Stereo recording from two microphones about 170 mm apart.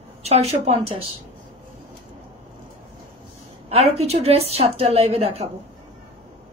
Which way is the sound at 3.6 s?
35° right (ahead or behind).